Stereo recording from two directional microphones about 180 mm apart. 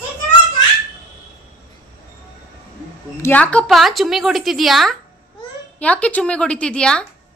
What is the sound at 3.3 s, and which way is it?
A woman's voice, 5° left (ahead or behind).